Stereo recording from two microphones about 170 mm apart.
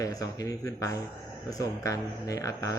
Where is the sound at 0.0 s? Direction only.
20° left (ahead or behind).